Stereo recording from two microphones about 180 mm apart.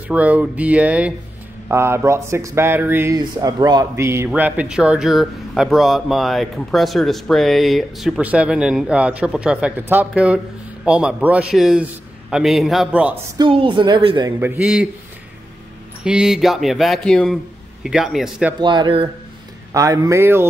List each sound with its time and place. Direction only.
0.1 s speech: 5° right (ahead or behind)
13.4 s a woman's voice: 30° right (ahead or behind)
14.4 s speech: 10° right (ahead or behind)
16.0 s speech: 5° right (ahead or behind)
18.6 s a woman's voice: 25° right (ahead or behind)